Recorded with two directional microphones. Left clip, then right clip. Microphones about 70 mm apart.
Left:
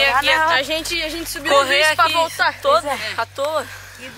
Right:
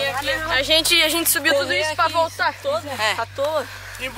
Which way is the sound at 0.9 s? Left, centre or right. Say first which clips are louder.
Right 6 dB; right.